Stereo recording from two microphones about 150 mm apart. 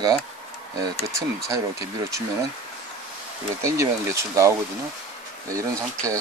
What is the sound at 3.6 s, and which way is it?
Speech, 20° right (ahead or behind).